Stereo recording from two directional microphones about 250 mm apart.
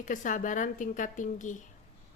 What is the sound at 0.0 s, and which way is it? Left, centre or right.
Speech, left.